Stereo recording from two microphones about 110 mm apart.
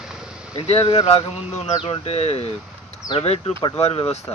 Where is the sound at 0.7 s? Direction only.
65° left (ahead or behind).